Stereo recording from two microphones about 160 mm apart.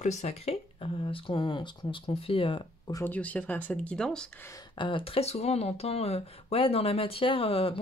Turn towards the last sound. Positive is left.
turn(degrees=35)  # may be behind; listen again after turning